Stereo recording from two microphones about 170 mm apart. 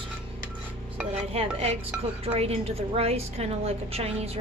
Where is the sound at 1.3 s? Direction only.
35° right (ahead or behind).